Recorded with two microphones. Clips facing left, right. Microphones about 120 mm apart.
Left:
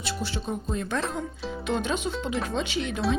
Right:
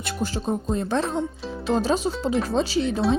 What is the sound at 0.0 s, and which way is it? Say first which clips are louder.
Speech: right 4 dB; 40° right (ahead or behind).